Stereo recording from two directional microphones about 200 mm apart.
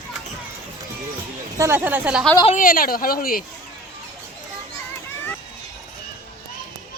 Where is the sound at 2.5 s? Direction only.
45° left (ahead or behind).